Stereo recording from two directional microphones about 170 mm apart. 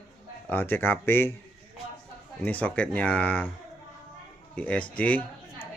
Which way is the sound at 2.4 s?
10° left (ahead or behind).